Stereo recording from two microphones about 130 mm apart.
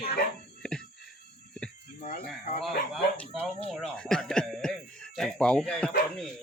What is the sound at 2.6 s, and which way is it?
Speech, centre (ahead or behind).